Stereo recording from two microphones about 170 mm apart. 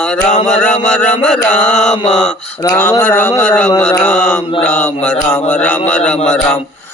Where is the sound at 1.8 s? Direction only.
5° left (ahead or behind).